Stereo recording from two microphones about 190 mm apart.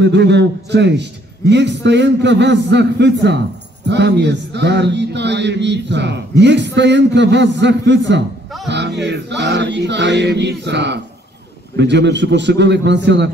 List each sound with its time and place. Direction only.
0.0 s music: 65° right (ahead or behind)
6.4 s a man's voice: 65° right (ahead or behind)
8.6 s music: 65° right (ahead or behind)